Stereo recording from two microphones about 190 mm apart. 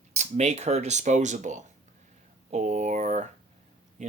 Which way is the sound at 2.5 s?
40° right (ahead or behind).